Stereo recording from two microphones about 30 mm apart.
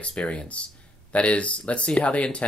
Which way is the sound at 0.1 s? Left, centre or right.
Left.